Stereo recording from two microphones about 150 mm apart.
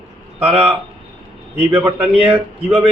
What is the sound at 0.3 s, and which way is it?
Speech, 10° right (ahead or behind).